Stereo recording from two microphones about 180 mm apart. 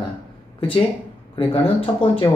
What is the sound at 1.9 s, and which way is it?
Speech, 20° left (ahead or behind).